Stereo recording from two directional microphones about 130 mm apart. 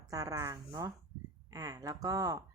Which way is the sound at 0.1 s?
25° right (ahead or behind).